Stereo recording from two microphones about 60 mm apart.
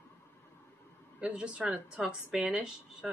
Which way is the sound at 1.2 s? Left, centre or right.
Centre.